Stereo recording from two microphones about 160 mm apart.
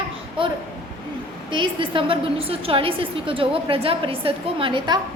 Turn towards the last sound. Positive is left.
turn(degrees=-30)  # may be behind; listen again after turning